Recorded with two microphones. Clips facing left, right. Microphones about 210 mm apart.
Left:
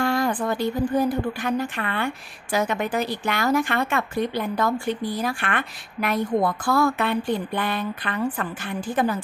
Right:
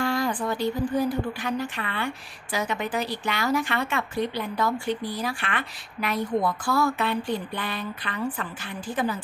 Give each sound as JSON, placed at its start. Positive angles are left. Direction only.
{"t": 0.0, "sound": "speech", "side_deg": 55}